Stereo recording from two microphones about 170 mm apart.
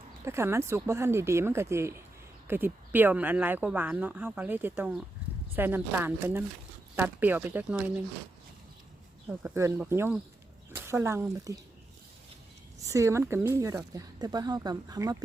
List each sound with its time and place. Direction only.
0.3 s speech: 15° right (ahead or behind)
9.4 s speech: 15° right (ahead or behind)
12.9 s speech: 15° right (ahead or behind)